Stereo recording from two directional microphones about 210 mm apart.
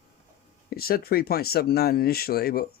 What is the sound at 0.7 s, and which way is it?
Speech, 45° left (ahead or behind).